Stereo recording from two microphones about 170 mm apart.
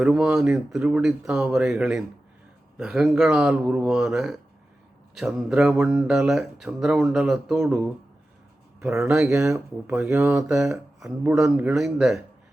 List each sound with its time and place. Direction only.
0.0 s speech: 5° right (ahead or behind)
8.8 s speech: 10° right (ahead or behind)
9.4 s speech: 15° right (ahead or behind)